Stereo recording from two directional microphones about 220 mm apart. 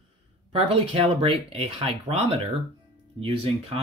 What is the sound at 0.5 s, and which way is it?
Speech, 25° right (ahead or behind).